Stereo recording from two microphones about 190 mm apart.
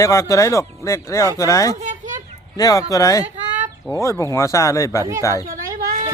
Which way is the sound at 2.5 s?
20° left (ahead or behind).